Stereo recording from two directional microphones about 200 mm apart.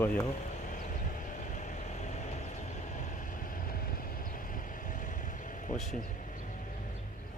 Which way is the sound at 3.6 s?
50° left (ahead or behind).